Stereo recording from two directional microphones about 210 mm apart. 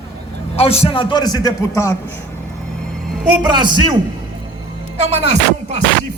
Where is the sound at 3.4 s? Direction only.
20° right (ahead or behind).